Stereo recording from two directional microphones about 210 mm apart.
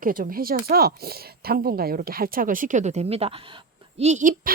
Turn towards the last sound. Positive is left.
turn(degrees=-35)  # may be behind; listen again after turning